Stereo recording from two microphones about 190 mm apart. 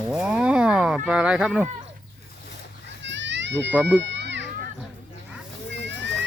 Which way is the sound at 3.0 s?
70° right (ahead or behind).